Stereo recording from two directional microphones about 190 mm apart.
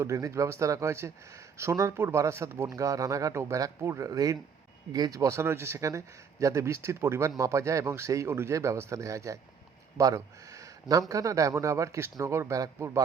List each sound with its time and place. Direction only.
0.0 s speech: 15° right (ahead or behind)